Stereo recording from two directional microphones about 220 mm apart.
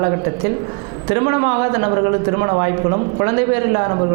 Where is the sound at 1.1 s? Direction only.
20° right (ahead or behind).